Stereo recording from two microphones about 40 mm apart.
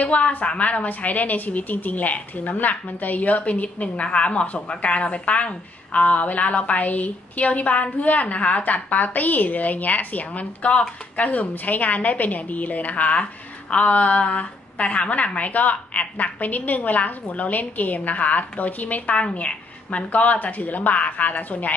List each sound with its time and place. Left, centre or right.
0.0 s a woman's voice: left